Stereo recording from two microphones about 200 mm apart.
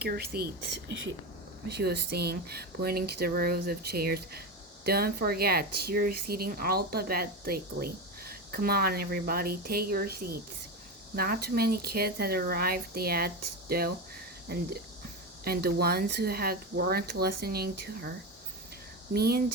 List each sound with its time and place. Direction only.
0.0 s speech: 50° right (ahead or behind)
19.1 s speech: 50° right (ahead or behind)